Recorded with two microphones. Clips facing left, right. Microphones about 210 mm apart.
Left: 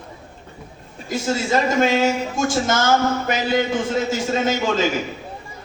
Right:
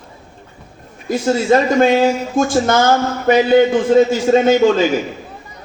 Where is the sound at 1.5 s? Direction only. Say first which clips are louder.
Right 6 dB; 55° right (ahead or behind).